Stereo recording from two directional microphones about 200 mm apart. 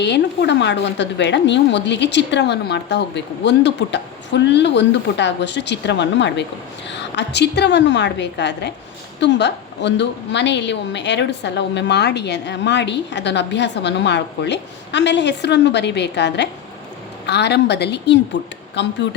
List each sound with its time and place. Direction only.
0.0 s a woman's voice: 60° left (ahead or behind)